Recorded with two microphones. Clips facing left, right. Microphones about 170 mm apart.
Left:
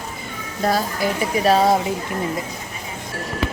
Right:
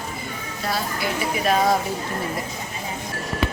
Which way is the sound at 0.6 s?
40° left (ahead or behind).